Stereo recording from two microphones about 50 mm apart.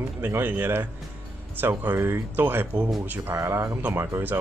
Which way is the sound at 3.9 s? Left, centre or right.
Right.